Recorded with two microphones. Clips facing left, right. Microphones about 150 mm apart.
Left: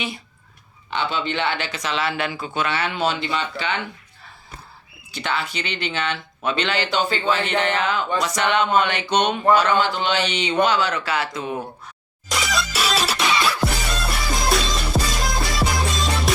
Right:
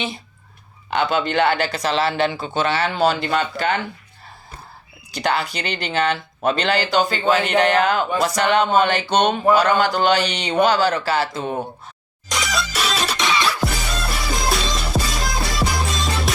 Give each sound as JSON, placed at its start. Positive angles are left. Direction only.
{"t": 0.9, "sound": "speech", "side_deg": -45}
{"t": 5.1, "sound": "speech", "side_deg": -40}
{"t": 12.3, "sound": "music", "side_deg": 0}